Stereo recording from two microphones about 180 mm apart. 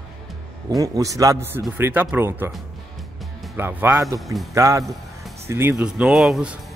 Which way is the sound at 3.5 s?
15° right (ahead or behind).